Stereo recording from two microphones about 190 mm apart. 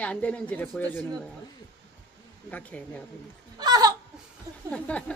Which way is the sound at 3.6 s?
20° right (ahead or behind).